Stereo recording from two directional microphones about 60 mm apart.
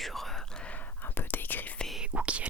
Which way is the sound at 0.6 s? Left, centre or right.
Left.